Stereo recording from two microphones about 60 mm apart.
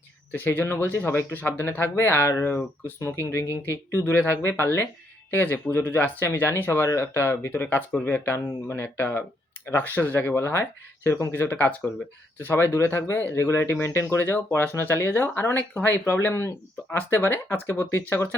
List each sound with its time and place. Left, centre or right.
0.3 s speech: left
7.6 s speech: left
11.3 s speech: left
12.4 s speech: left